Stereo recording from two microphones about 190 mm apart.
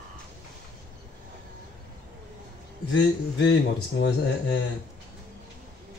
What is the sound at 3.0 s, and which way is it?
Speech, 70° left (ahead or behind).